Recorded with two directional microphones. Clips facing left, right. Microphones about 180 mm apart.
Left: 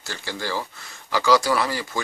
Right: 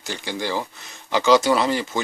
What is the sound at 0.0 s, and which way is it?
Speech, 20° right (ahead or behind).